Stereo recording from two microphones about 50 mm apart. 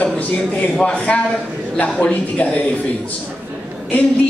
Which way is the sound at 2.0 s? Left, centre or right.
Left.